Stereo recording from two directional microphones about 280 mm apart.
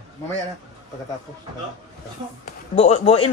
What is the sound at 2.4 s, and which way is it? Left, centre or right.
Speech, left.